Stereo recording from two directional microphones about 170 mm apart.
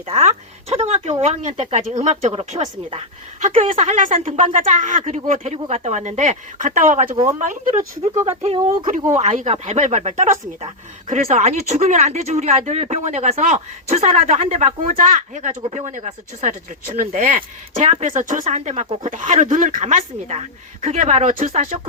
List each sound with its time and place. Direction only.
0.1 s speech: 40° right (ahead or behind)